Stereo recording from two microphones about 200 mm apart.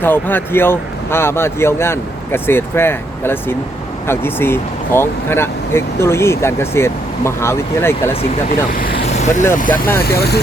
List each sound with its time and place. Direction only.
0.0 s speech: 10° left (ahead or behind)
9.0 s vehicle: 35° left (ahead or behind)
9.7 s speech: 10° left (ahead or behind)
10.0 s speech: 50° left (ahead or behind)